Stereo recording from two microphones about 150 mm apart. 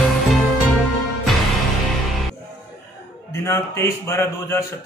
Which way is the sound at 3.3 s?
20° left (ahead or behind).